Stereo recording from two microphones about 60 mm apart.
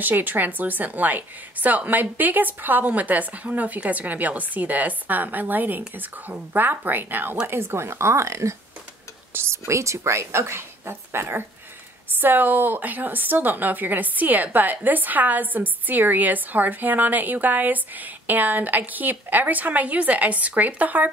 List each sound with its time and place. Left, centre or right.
0.0 s a woman's voice: right